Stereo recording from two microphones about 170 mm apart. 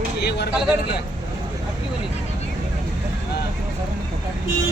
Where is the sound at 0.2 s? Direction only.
75° left (ahead or behind).